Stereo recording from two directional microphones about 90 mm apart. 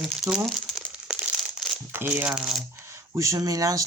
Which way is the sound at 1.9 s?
25° right (ahead or behind).